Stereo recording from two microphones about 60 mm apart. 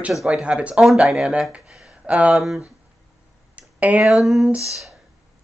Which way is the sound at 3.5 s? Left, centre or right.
Right.